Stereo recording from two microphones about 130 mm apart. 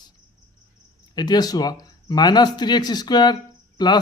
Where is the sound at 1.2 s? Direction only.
30° left (ahead or behind).